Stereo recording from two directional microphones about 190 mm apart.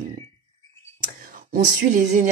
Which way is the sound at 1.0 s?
45° right (ahead or behind).